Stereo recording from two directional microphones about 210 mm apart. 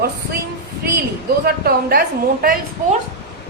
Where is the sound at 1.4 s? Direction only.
45° right (ahead or behind).